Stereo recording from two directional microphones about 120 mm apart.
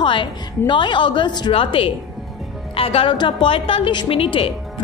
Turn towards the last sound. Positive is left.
turn(degrees=50)  # may be behind; listen again after turning